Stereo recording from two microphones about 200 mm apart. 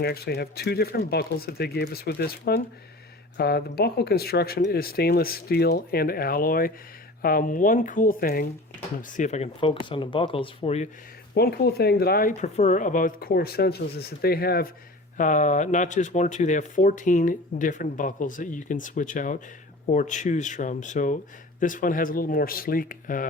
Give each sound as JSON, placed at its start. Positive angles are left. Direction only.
{"t": 0.0, "sound": "speech", "side_deg": 50}
{"t": 11.3, "sound": "speech", "side_deg": 50}
{"t": 12.4, "sound": "speech", "side_deg": 35}
{"t": 15.2, "sound": "speech", "side_deg": 40}